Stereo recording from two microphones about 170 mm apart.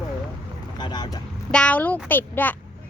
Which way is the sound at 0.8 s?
25° left (ahead or behind).